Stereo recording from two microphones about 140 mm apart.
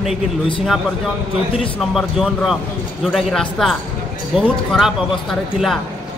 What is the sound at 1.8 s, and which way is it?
Speech, centre (ahead or behind).